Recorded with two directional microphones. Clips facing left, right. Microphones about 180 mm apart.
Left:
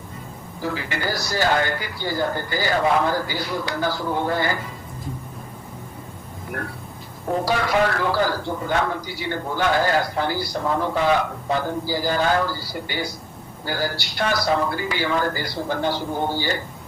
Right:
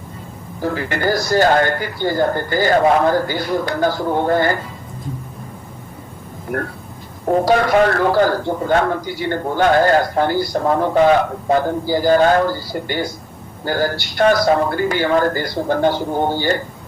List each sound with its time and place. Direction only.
0.6 s a man's voice: 50° right (ahead or behind)
7.3 s a man's voice: 50° right (ahead or behind)